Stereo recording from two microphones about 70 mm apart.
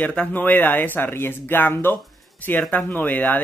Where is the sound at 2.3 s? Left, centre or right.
Left.